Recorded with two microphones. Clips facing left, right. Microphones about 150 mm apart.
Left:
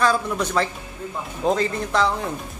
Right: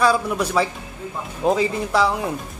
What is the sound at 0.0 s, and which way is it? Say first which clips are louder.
Speech: right 2 dB; 5° right (ahead or behind).